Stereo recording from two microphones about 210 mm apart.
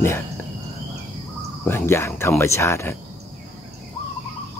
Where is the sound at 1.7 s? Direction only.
10° left (ahead or behind).